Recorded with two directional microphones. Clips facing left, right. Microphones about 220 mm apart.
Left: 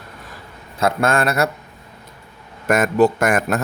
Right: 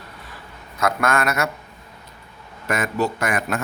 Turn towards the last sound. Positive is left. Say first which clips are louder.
# left 5 dB
turn(degrees=45)  # may be behind; listen again after turning